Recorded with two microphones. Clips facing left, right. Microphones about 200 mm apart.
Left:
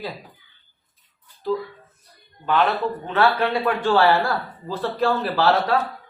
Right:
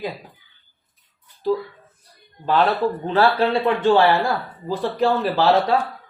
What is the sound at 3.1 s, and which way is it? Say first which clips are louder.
Speech: right 2 dB; 30° right (ahead or behind).